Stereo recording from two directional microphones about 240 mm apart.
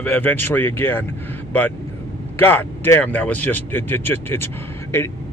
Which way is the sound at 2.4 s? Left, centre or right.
Centre.